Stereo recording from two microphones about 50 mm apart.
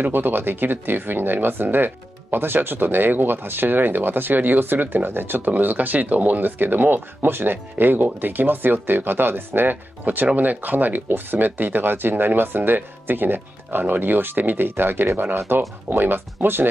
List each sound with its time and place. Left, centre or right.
0.0 s speech: right
5.5 s speech: right